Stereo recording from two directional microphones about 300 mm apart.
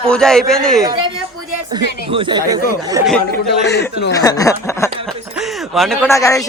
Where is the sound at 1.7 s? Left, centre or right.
Centre.